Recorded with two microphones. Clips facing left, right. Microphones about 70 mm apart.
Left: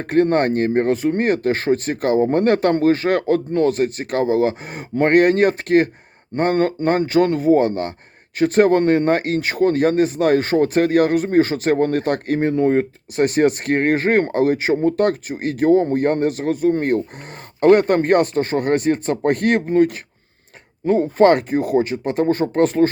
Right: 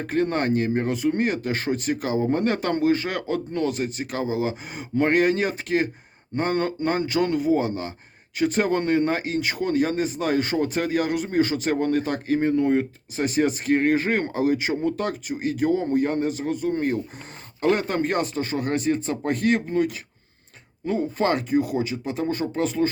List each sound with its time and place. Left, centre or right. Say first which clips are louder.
0.0 s speech: left 7 dB; left
13.1 s speech: left 6 dB; left